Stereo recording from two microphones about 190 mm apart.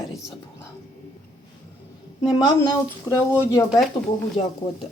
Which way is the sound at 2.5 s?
20° left (ahead or behind).